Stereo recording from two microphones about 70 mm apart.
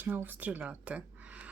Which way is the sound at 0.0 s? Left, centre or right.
Right.